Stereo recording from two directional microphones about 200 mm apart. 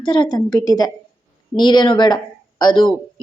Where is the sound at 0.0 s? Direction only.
25° left (ahead or behind).